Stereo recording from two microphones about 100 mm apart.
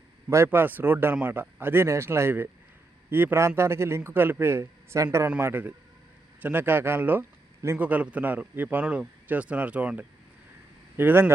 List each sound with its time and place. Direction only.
0.3 s a man's voice: 25° right (ahead or behind)
5.4 s a man's voice: 20° right (ahead or behind)